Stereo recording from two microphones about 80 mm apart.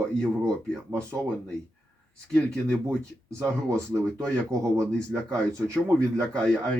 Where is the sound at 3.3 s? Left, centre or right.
Right.